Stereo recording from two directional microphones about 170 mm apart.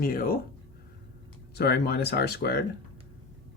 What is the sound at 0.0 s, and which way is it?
Speech, 60° left (ahead or behind).